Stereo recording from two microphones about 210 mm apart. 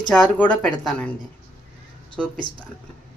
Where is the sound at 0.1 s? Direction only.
5° left (ahead or behind).